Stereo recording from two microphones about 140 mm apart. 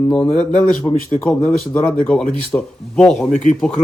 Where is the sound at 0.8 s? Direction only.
25° left (ahead or behind).